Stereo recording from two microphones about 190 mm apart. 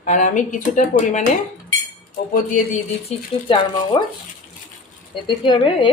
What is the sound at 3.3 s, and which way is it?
Speech, 30° left (ahead or behind).